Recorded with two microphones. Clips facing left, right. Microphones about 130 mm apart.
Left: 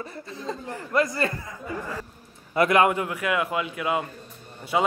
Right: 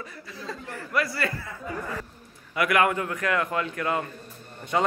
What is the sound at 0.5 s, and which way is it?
Speech, 20° left (ahead or behind).